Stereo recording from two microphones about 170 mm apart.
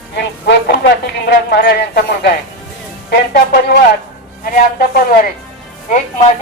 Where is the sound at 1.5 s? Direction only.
65° left (ahead or behind).